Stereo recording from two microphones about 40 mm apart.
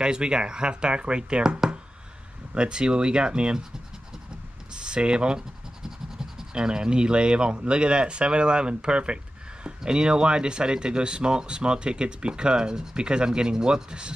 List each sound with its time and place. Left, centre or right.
0.0 s speech: right
2.5 s speech: right
4.7 s speech: right